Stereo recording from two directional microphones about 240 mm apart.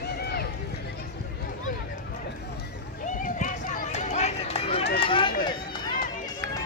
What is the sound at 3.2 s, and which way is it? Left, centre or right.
Run, left.